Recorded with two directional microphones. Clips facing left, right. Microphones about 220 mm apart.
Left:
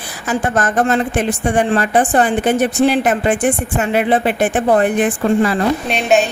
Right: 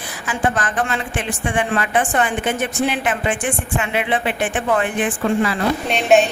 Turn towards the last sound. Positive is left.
turn(degrees=0)  # may be behind; listen again after turning